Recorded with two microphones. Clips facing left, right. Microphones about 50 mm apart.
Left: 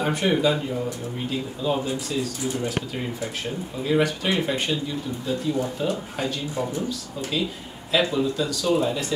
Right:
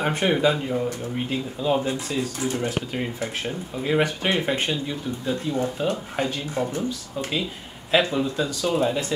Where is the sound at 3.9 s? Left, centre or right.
Right.